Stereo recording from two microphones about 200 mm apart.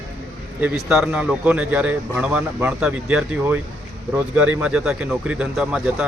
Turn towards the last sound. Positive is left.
turn(degrees=-5)  # may be behind; listen again after turning